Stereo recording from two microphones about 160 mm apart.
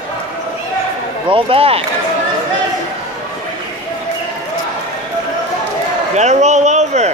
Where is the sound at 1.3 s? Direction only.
35° right (ahead or behind).